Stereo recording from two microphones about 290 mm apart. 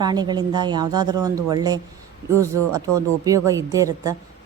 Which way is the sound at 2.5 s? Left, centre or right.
Right.